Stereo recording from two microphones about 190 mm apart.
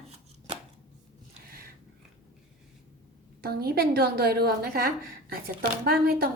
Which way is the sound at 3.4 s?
55° right (ahead or behind).